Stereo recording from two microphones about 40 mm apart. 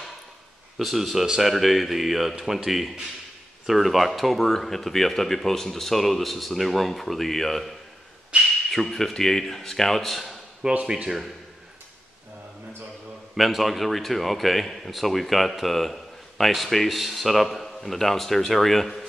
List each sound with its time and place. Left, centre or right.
0.7 s speech: centre
8.3 s speech: right
8.7 s speech: centre
10.6 s speech: right
13.4 s speech: centre